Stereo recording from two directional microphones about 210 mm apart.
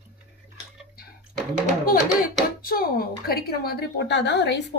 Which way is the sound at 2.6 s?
45° left (ahead or behind).